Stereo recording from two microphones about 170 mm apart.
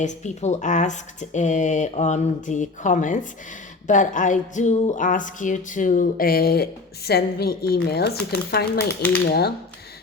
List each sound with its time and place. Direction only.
0.0 s speech: 45° left (ahead or behind); by 8.8 s 70° left (ahead or behind)
8.9 s speech: 10° left (ahead or behind)
9.2 s speech: 70° left (ahead or behind)